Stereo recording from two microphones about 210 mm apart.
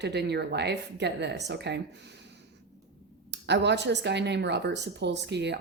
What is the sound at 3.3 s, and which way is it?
Speech, 55° right (ahead or behind).